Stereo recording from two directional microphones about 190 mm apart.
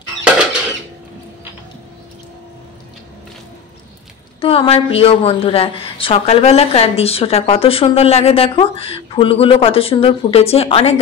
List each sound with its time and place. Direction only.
4.4 s a woman's voice: 30° left (ahead or behind)